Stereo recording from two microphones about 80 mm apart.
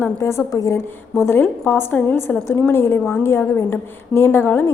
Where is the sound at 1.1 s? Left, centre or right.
Left.